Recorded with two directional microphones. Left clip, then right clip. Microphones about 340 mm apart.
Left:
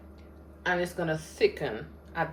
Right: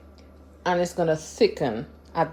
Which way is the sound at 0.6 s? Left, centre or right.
Centre.